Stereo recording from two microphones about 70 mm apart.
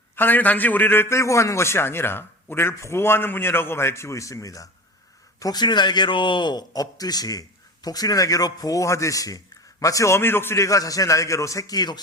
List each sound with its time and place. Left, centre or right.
0.2 s a man's voice: left
5.4 s a man's voice: left
10.6 s a man's voice: left